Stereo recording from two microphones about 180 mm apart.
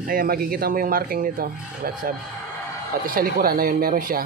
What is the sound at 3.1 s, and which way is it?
Speech, 55° right (ahead or behind).